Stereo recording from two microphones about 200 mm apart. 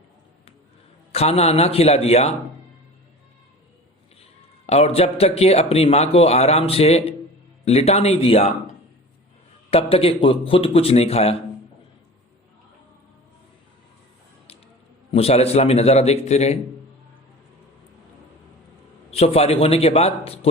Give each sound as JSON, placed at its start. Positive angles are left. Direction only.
{"t": 1.1, "sound": "a man's voice", "side_deg": 30}
{"t": 4.6, "sound": "a man's voice", "side_deg": 30}
{"t": 9.6, "sound": "speech", "side_deg": 30}
{"t": 15.1, "sound": "a man's voice", "side_deg": 30}
{"t": 19.1, "sound": "a man's voice", "side_deg": 30}